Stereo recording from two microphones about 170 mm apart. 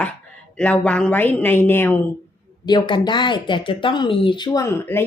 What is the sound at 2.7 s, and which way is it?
Speech, 25° left (ahead or behind).